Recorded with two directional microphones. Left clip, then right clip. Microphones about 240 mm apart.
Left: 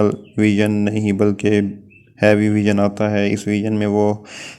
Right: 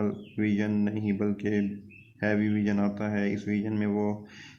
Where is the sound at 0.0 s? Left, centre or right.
Left.